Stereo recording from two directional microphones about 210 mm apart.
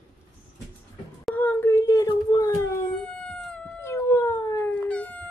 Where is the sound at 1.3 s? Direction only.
10° left (ahead or behind).